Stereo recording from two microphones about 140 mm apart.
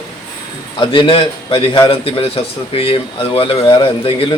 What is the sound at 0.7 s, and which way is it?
Speech, 35° left (ahead or behind).